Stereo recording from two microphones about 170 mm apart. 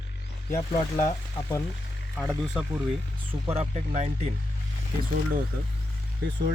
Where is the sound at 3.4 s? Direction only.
40° right (ahead or behind).